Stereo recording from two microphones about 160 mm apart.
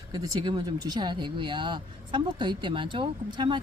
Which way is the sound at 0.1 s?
25° right (ahead or behind).